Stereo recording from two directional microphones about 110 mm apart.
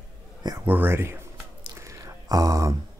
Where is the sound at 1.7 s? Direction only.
25° right (ahead or behind).